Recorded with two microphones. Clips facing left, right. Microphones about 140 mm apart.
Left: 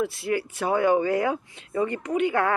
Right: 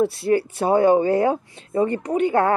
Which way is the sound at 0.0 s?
30° right (ahead or behind).